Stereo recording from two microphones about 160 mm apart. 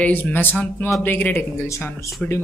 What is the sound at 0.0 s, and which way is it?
A woman's voice, 10° left (ahead or behind).